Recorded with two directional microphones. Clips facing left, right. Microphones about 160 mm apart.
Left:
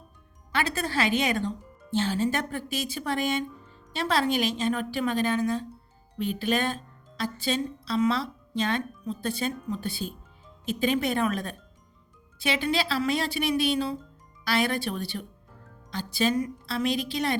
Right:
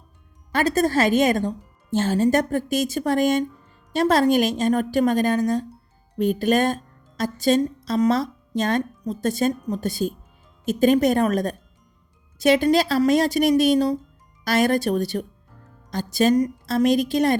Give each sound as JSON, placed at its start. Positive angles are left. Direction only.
{"t": 0.5, "sound": "speech", "side_deg": -40}